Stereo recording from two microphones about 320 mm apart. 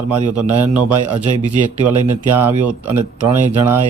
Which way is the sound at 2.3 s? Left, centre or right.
Centre.